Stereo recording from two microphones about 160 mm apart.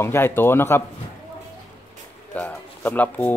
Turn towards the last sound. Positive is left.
turn(degrees=10)  # may be behind; listen again after turning